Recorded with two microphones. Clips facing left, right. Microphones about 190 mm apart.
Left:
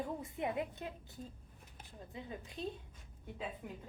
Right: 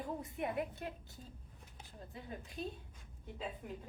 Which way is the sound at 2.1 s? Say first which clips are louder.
Left 2 dB; 20° left (ahead or behind).